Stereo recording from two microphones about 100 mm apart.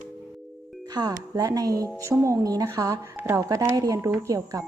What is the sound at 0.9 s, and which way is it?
Speech, 40° right (ahead or behind).